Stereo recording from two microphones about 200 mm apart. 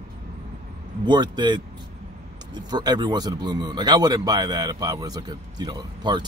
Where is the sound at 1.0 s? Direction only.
20° right (ahead or behind).